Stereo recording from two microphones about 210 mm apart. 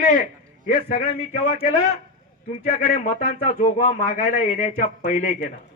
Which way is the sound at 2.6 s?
40° left (ahead or behind).